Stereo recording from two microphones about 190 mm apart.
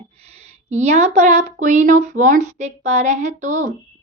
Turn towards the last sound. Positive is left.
turn(degrees=-40)  # may be behind; listen again after turning